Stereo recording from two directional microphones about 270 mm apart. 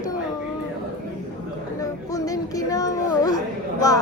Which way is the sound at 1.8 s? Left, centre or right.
Centre.